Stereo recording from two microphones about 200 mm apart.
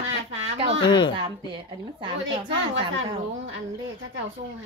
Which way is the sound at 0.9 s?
20° left (ahead or behind).